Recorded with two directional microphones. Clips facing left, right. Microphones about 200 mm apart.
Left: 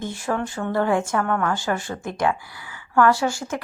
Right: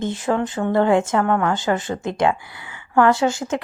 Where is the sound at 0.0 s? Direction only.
20° right (ahead or behind).